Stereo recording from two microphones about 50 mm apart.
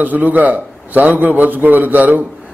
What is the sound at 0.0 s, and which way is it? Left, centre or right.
A man's voice, right.